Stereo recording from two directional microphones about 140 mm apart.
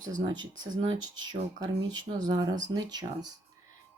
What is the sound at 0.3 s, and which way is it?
Speech, 30° right (ahead or behind).